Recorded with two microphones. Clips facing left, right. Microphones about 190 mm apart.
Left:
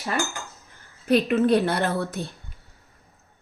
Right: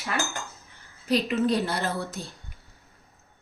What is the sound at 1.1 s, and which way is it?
A woman's voice, 55° left (ahead or behind).